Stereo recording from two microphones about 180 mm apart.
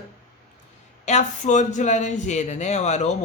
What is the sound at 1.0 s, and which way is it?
A man's voice, 40° left (ahead or behind).